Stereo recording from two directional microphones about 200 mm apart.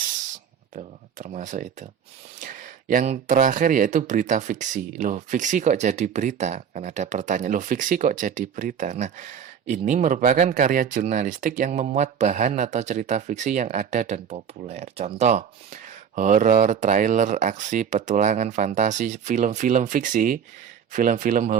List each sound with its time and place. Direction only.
0.8 s speech: 35° right (ahead or behind)